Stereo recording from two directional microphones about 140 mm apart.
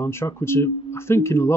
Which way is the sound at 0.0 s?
20° left (ahead or behind).